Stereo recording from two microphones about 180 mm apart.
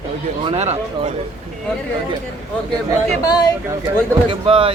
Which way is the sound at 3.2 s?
20° left (ahead or behind).